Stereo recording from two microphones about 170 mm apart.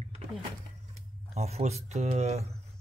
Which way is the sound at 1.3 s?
40° right (ahead or behind).